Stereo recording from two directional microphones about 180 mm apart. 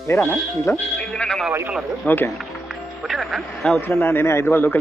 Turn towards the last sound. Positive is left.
turn(degrees=15)  # may be behind; listen again after turning